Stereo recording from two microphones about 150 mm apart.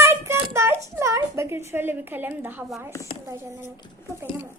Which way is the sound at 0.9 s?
20° right (ahead or behind).